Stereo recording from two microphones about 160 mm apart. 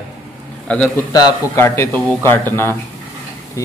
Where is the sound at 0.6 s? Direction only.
5° left (ahead or behind).